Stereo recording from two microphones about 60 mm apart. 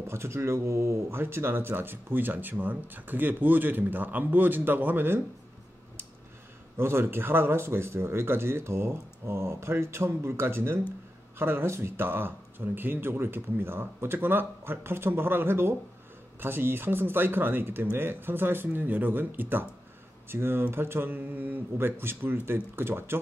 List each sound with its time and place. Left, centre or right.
0.0 s speech: right
1.2 s speech: right
6.8 s speech: right